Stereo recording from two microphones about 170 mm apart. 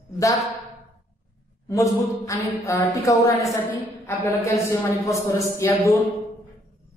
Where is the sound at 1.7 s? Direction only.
20° left (ahead or behind).